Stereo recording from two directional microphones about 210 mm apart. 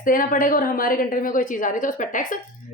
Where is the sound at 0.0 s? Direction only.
40° left (ahead or behind).